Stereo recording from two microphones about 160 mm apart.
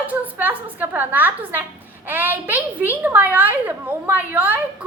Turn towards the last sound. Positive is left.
turn(degrees=-10)  # may be behind; listen again after turning